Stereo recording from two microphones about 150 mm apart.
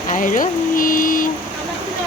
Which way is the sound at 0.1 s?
60° left (ahead or behind).